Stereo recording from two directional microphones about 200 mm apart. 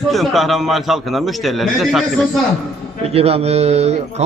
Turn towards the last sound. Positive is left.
turn(degrees=-30)  # may be behind; listen again after turning